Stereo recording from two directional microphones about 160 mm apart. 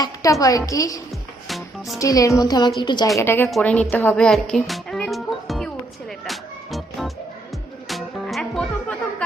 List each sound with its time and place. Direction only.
0.0 s a woman's voice: 20° left (ahead or behind)
1.5 s music: centre (ahead or behind)
2.0 s a woman's voice: 20° left (ahead or behind)
3.2 s a woman's voice: 15° left (ahead or behind)
3.5 s music: 5° left (ahead or behind)